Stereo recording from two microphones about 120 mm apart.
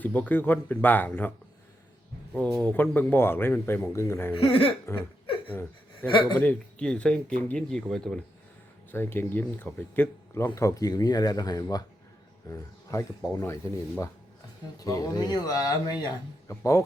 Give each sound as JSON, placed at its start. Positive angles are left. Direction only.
{"t": 0.0, "sound": "speech", "side_deg": 15}
{"t": 2.7, "sound": "speech", "side_deg": 15}
{"t": 4.4, "sound": "speech", "side_deg": 50}
{"t": 5.5, "sound": "a sound", "side_deg": 20}
{"t": 6.3, "sound": "speech", "side_deg": 15}
{"t": 8.9, "sound": "speech", "side_deg": 20}
{"t": 14.8, "sound": "speech", "side_deg": 30}